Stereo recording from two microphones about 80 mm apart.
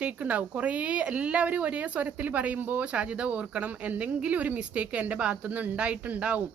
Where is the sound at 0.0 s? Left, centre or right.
Centre.